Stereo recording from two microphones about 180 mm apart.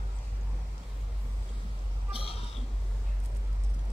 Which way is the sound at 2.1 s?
30° left (ahead or behind).